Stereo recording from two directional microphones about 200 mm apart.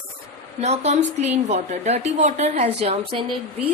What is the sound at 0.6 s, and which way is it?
A woman's voice, 35° right (ahead or behind).